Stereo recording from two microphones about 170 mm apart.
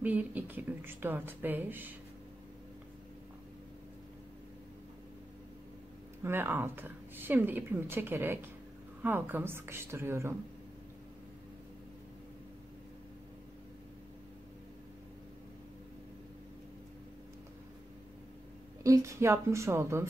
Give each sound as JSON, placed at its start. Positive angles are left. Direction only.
{"t": 0.0, "sound": "speech", "side_deg": -10}
{"t": 6.2, "sound": "speech", "side_deg": -10}
{"t": 18.8, "sound": "speech", "side_deg": -20}